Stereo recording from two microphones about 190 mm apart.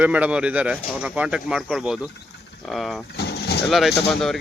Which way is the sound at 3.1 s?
60° left (ahead or behind).